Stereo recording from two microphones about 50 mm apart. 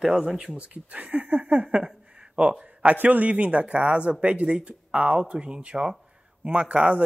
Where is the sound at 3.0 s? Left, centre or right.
Right.